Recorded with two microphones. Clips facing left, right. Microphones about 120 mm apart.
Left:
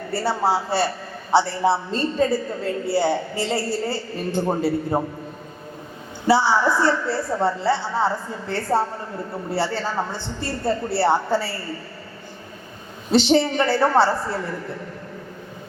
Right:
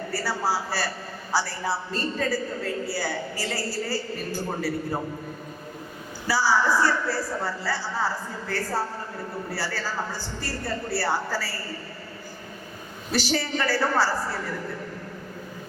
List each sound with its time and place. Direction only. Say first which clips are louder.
0.1 s a woman's voice: left 7 dB; 25° left (ahead or behind)
6.2 s a woman's voice: left 5 dB; 25° left (ahead or behind)
13.1 s a woman's voice: left 9 dB; 25° left (ahead or behind)